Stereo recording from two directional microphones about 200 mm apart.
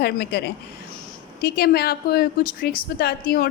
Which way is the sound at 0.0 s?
50° left (ahead or behind).